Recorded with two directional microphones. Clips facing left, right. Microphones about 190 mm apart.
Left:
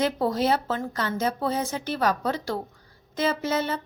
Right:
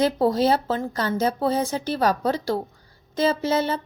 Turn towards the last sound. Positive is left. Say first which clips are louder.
# right 4 dB
turn(degrees=-30)  # may be behind; listen again after turning